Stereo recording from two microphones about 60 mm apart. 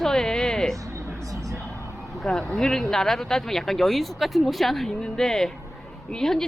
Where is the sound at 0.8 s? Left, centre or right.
Right.